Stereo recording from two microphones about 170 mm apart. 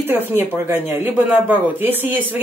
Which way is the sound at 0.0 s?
10° right (ahead or behind).